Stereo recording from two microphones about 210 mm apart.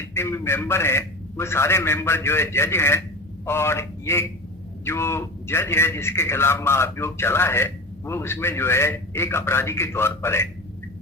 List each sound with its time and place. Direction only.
0.1 s a man's voice: 10° left (ahead or behind)